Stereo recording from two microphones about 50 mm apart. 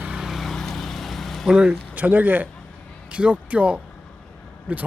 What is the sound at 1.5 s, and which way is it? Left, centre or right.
Speech, right.